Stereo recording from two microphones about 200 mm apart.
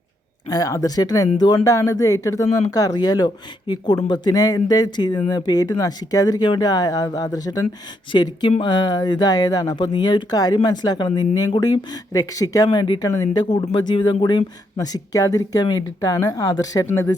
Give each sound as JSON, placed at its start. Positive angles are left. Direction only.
{"t": 0.4, "sound": "speech", "side_deg": 20}